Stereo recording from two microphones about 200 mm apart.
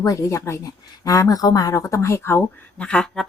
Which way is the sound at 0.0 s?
15° left (ahead or behind).